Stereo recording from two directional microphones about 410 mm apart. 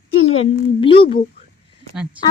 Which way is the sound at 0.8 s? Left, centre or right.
Centre.